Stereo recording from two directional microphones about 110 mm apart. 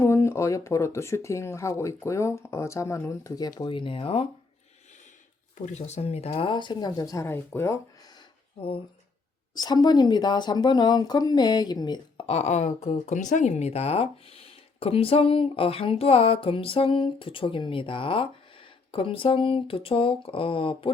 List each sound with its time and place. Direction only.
0.0 s speech: 25° left (ahead or behind)
3.7 s speech: 50° left (ahead or behind)
5.7 s speech: 85° left; by 7.8 s 25° left (ahead or behind)
9.6 s speech: 40° left (ahead or behind)
12.2 s speech: 75° left (ahead or behind); by 20.9 s 55° left (ahead or behind)